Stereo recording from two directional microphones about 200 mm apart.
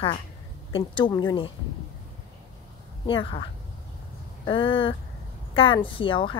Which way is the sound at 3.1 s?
25° left (ahead or behind).